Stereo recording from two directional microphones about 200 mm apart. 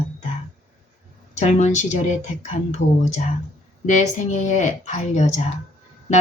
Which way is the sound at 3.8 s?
35° left (ahead or behind).